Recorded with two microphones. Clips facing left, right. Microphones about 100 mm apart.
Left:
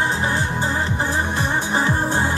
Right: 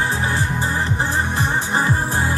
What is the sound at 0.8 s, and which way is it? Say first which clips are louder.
Music: right 1 dB; 35° right (ahead or behind).